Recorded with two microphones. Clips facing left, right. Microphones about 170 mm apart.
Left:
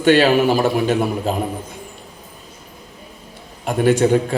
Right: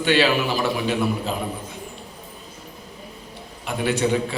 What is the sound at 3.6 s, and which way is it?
Speech, 45° left (ahead or behind).